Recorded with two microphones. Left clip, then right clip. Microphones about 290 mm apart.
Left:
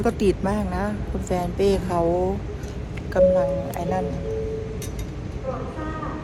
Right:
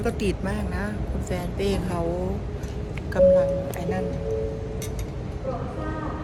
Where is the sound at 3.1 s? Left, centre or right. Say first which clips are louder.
Even; centre.